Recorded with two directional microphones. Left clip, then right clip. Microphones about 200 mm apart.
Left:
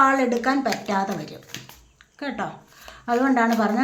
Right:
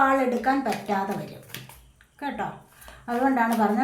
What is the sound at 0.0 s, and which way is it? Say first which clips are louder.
A woman's voice: left 3 dB; 35° left (ahead or behind).